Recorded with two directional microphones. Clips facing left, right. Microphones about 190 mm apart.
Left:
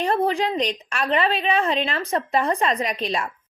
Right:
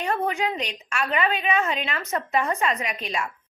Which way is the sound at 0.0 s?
30° left (ahead or behind).